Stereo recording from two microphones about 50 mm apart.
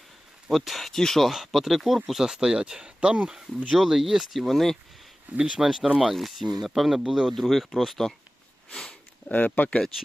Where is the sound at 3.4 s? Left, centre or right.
Centre.